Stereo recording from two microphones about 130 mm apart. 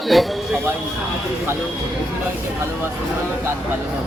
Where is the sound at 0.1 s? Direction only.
Centre (ahead or behind).